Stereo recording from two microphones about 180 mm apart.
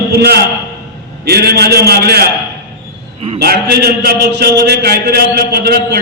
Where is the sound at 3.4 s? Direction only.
60° right (ahead or behind).